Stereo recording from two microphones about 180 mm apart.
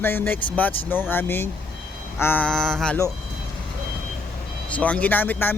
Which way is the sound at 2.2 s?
10° left (ahead or behind).